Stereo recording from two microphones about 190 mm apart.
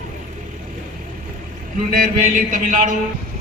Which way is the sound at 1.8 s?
50° right (ahead or behind).